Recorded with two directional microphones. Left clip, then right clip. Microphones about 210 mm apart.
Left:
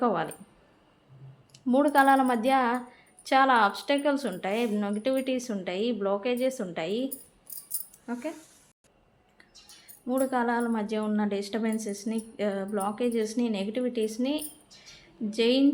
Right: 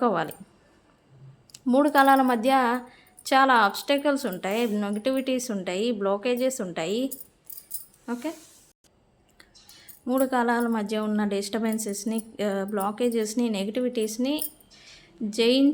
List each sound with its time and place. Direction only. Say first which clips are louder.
0.0 s a woman's voice: right 2 dB; 15° right (ahead or behind)
1.5 s a woman's voice: right 2 dB; 15° right (ahead or behind)
8.0 s speech: right 3 dB; 30° right (ahead or behind)
10.1 s a woman's voice: right 3 dB; 25° right (ahead or behind)